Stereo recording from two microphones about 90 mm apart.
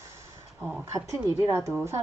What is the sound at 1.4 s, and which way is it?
Speech, 30° right (ahead or behind).